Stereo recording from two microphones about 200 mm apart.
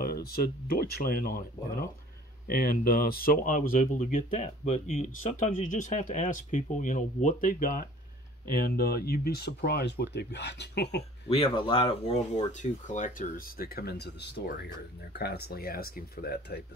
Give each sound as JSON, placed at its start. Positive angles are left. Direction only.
{"t": 0.0, "sound": "speech", "side_deg": 50}
{"t": 2.4, "sound": "speech", "side_deg": 45}
{"t": 11.2, "sound": "speech", "side_deg": 25}